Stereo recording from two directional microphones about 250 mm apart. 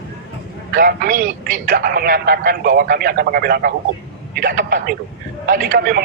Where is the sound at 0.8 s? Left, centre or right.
Right.